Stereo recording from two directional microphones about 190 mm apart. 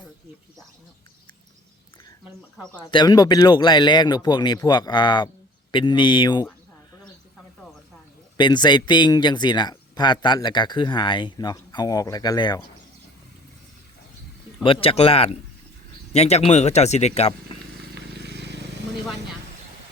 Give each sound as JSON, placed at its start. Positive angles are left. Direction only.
{"t": 2.8, "sound": "speech", "side_deg": 20}
{"t": 8.4, "sound": "speech", "side_deg": 25}
{"t": 14.6, "sound": "speech", "side_deg": 30}
{"t": 17.9, "sound": "a sound", "side_deg": -60}